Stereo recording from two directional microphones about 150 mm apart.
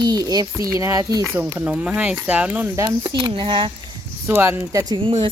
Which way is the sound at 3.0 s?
35° right (ahead or behind).